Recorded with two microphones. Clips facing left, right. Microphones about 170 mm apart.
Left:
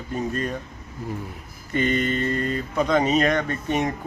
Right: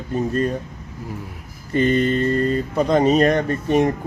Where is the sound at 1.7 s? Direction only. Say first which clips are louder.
Right 5 dB; 35° right (ahead or behind).